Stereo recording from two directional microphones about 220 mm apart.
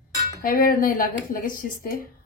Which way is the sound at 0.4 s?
40° left (ahead or behind).